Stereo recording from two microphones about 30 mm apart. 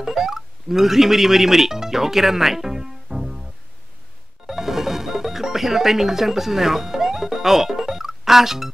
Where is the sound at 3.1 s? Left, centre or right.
Right.